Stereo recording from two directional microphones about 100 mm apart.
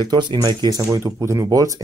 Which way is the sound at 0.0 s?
50° right (ahead or behind).